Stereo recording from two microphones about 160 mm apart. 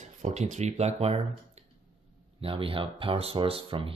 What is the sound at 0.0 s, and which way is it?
Speech, 50° right (ahead or behind).